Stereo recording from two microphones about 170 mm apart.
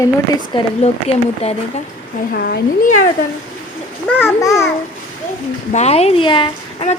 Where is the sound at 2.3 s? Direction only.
65° left (ahead or behind).